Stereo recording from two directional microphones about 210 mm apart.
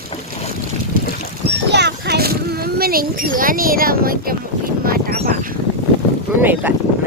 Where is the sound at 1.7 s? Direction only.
55° right (ahead or behind).